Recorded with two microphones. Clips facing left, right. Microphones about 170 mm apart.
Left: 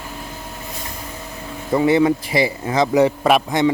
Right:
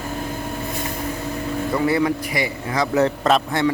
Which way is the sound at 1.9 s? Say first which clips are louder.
Left 4 dB; 25° left (ahead or behind).